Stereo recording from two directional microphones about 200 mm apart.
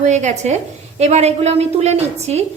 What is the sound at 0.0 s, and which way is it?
A woman's voice, 35° right (ahead or behind).